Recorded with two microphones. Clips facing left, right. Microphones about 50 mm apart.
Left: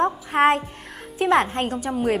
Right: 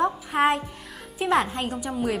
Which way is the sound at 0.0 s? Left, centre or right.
Left.